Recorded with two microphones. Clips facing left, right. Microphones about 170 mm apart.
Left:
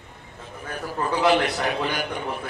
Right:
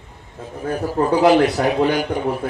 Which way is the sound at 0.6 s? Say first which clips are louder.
Right 9 dB; 35° right (ahead or behind).